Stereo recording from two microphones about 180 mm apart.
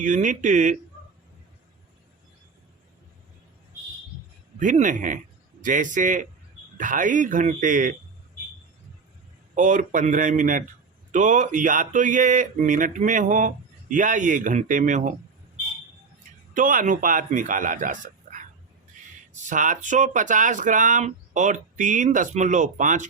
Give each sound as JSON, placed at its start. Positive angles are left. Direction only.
{"t": 0.0, "sound": "speech", "side_deg": -45}
{"t": 4.6, "sound": "speech", "side_deg": -45}
{"t": 9.6, "sound": "speech", "side_deg": -45}
{"t": 16.6, "sound": "speech", "side_deg": -50}